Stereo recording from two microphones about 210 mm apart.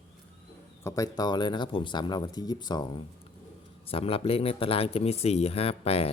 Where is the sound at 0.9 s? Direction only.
15° left (ahead or behind).